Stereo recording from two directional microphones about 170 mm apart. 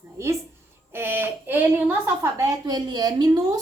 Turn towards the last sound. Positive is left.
turn(degrees=-20)  # may be behind; listen again after turning